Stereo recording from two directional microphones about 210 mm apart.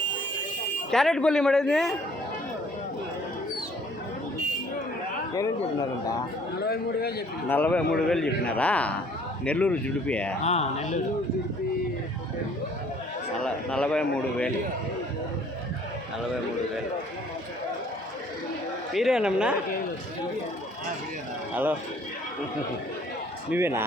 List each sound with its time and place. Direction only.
0.9 s speech: centre (ahead or behind)
6.6 s a man's voice: 50° left (ahead or behind)
7.4 s a man's voice: 10° left (ahead or behind)
10.4 s speech: 30° left (ahead or behind)
13.4 s a man's voice: 5° left (ahead or behind)
18.9 s speech: centre (ahead or behind)
21.5 s speech: 10° right (ahead or behind)
23.5 s speech: 10° right (ahead or behind)